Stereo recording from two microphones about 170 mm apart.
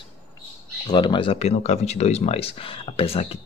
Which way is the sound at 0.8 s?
25° left (ahead or behind).